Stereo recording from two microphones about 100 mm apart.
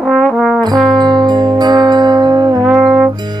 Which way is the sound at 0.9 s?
45° right (ahead or behind).